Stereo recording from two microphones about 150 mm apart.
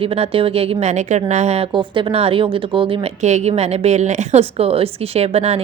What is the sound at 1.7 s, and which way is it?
A woman's voice, 35° right (ahead or behind).